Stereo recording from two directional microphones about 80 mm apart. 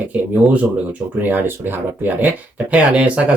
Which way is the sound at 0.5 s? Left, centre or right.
Right.